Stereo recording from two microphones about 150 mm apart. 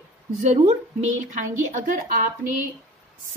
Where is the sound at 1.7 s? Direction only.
60° right (ahead or behind).